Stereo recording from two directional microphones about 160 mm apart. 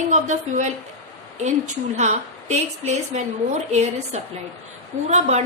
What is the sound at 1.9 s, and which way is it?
A woman's voice, 45° right (ahead or behind).